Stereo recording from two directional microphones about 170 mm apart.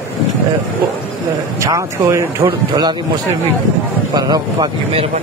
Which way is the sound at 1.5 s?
20° right (ahead or behind).